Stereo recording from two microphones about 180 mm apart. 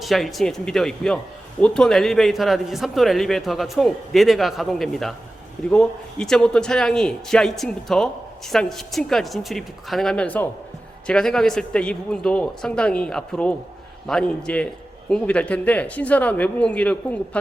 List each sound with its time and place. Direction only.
0.0 s a man's voice: centre (ahead or behind)